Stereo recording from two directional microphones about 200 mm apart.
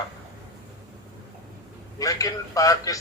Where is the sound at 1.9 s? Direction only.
15° left (ahead or behind).